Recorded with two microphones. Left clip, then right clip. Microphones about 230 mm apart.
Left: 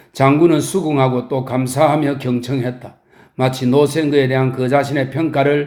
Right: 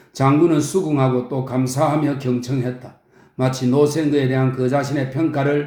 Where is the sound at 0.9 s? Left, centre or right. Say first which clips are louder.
Left 3 dB; left.